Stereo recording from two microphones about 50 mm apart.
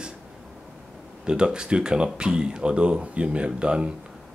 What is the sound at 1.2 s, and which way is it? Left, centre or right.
Speech, centre.